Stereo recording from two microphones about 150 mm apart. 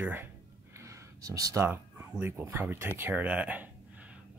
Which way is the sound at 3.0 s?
15° right (ahead or behind).